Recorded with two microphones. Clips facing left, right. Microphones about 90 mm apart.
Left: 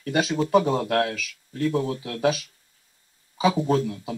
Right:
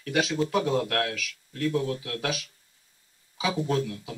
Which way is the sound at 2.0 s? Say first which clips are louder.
Left 7 dB; 45° left (ahead or behind).